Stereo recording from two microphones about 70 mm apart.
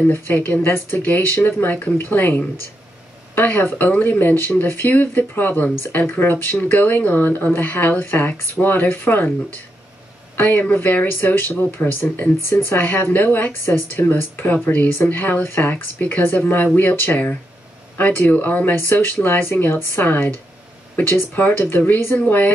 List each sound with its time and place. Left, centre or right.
0.0 s speech: left
10.3 s speech: left